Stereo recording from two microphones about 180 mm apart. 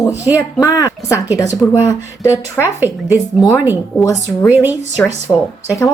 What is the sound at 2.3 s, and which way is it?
Speech, 10° right (ahead or behind).